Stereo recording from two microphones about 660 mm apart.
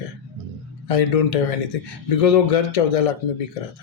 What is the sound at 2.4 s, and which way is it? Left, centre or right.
Speech, left.